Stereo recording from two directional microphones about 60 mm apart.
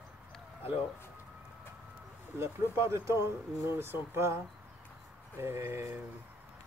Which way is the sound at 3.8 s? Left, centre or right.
Right.